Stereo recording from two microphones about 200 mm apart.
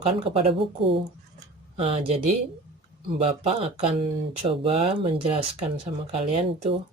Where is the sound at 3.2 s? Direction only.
30° right (ahead or behind).